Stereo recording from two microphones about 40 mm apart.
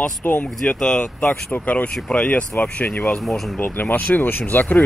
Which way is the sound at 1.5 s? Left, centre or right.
Left.